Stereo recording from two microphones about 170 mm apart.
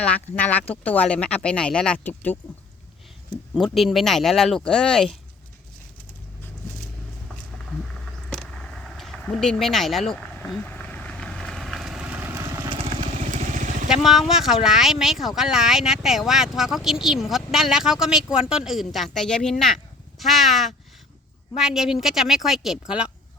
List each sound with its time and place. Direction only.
0.0 s speech: 5° left (ahead or behind)
3.5 s speech: centre (ahead or behind)
8.3 s a sound: 5° left (ahead or behind); by 12.8 s 25° right (ahead or behind)
13.3 s vehicle: 45° right (ahead or behind)
13.8 s speech: 5° right (ahead or behind)